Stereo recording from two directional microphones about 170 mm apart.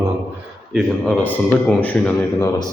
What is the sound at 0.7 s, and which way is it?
A man's voice, 5° left (ahead or behind).